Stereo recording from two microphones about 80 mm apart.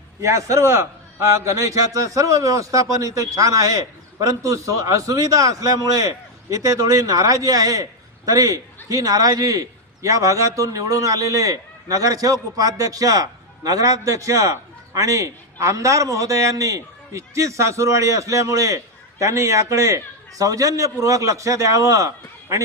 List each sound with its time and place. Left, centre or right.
0.2 s a man's voice: right